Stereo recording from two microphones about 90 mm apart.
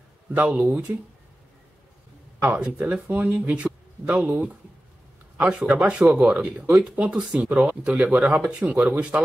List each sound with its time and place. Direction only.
0.3 s speech: 15° right (ahead or behind)
2.4 s speech: 20° right (ahead or behind)